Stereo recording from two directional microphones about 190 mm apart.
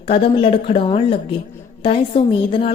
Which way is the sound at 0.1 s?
30° left (ahead or behind).